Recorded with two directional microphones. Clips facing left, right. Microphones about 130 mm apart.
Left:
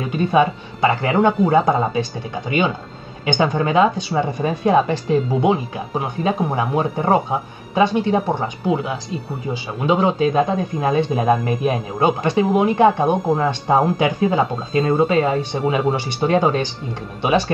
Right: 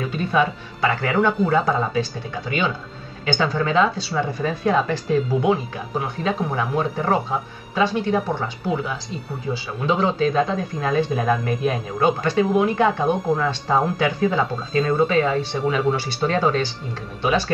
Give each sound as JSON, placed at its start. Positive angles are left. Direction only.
{"t": 0.0, "sound": "speech", "side_deg": 20}